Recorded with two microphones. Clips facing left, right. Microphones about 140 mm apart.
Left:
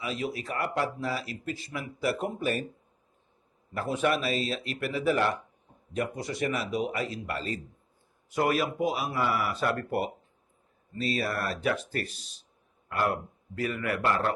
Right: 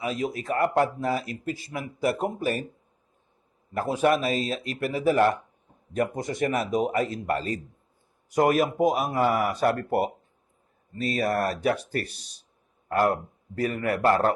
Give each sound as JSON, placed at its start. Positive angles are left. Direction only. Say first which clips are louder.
{"t": 0.0, "sound": "speech", "louder": "right 4 dB", "side_deg": -45}
{"t": 3.8, "sound": "speech", "louder": "right 5 dB", "side_deg": -40}
{"t": 12.9, "sound": "speech", "louder": "right 6 dB", "side_deg": -40}